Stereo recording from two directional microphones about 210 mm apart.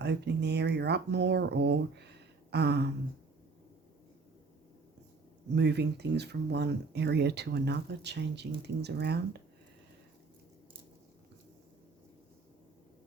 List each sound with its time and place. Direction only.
0.0 s speech: 55° right (ahead or behind)
5.5 s speech: 55° right (ahead or behind)